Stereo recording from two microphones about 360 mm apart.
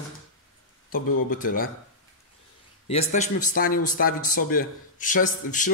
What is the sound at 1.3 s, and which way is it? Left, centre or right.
Speech, left.